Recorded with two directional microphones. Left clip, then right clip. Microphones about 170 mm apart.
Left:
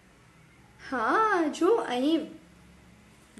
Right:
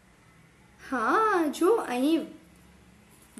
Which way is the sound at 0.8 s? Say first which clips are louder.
Even; 20° right (ahead or behind).